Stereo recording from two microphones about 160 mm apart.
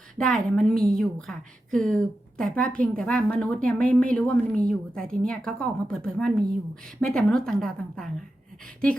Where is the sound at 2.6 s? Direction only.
60° right (ahead or behind).